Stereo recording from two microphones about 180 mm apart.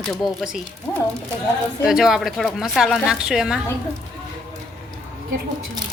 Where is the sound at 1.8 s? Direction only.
5° right (ahead or behind).